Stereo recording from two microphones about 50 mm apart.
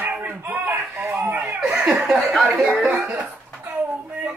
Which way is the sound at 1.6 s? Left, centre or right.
Centre.